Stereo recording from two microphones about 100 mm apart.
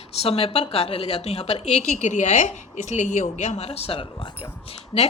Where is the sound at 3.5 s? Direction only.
90° left.